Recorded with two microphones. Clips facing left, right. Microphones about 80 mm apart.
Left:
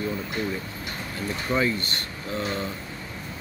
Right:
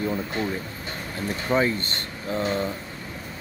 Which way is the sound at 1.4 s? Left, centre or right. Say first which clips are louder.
Right 2 dB; right.